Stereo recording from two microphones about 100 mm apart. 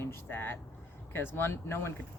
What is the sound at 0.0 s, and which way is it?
Speech, 25° left (ahead or behind).